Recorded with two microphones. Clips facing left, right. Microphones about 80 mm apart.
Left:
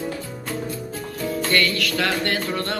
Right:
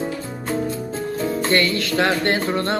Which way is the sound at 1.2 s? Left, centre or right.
Right.